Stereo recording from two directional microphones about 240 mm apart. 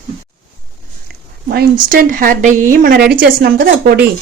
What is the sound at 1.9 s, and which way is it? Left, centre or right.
Speech, right.